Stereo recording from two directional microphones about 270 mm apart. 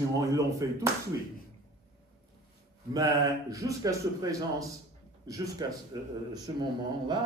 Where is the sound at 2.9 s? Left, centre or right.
Centre.